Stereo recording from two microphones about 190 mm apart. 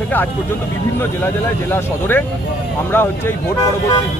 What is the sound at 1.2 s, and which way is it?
Speech, 10° left (ahead or behind).